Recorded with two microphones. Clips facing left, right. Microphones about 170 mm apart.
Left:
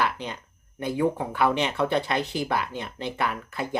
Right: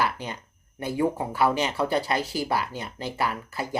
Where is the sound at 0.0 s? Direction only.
45° right (ahead or behind).